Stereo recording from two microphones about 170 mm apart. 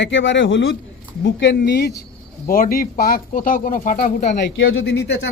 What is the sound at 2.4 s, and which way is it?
Speech, 55° left (ahead or behind).